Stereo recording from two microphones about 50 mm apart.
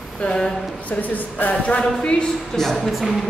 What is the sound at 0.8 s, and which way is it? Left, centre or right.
A woman's voice, left.